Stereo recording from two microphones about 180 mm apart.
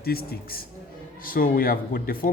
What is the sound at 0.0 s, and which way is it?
A man's voice, 60° left (ahead or behind).